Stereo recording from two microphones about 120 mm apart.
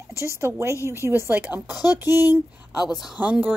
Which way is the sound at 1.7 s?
30° left (ahead or behind).